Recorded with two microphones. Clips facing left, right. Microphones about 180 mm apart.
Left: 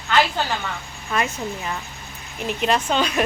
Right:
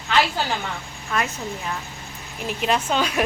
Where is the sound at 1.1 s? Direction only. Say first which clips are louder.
Left 2 dB; centre (ahead or behind).